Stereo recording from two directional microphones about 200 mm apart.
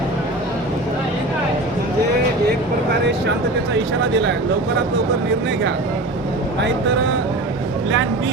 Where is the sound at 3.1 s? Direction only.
60° right (ahead or behind).